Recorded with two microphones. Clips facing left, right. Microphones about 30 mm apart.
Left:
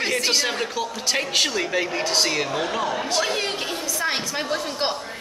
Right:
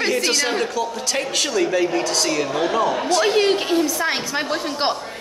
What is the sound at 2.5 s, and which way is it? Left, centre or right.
Speech, centre.